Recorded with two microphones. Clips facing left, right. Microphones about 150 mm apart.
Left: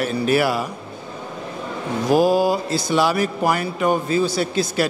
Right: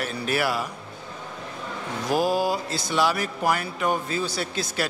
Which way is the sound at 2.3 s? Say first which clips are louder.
Left 6 dB; 10° left (ahead or behind).